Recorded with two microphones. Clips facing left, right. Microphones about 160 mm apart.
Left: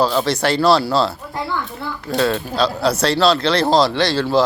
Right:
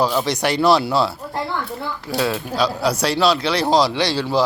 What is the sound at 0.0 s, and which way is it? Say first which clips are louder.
Speech: left 2 dB; 15° right (ahead or behind).